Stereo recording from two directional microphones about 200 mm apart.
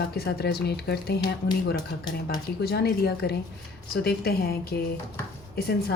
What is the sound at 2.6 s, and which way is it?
Speech, 55° left (ahead or behind).